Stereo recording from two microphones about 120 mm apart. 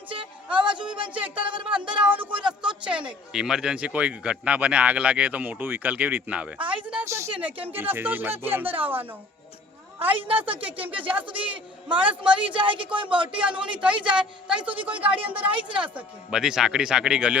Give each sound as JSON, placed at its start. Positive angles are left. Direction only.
{"t": 0.5, "sound": "speech", "side_deg": -40}
{"t": 1.0, "sound": "speech", "side_deg": -10}
{"t": 2.4, "sound": "a sound", "side_deg": -5}
{"t": 3.1, "sound": "speech", "side_deg": -5}
{"t": 7.0, "sound": "speech", "side_deg": -25}
{"t": 7.3, "sound": "speech", "side_deg": -10}
{"t": 10.2, "sound": "speech", "side_deg": -45}
{"t": 10.6, "sound": "speech", "side_deg": -10}
{"t": 10.8, "sound": "speech", "side_deg": -45}
{"t": 11.1, "sound": "speech", "side_deg": -10}
{"t": 12.5, "sound": "speech", "side_deg": -45}
{"t": 13.3, "sound": "speech", "side_deg": -10}